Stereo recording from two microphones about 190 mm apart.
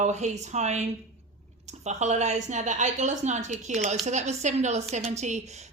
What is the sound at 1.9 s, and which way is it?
Speech, 40° right (ahead or behind).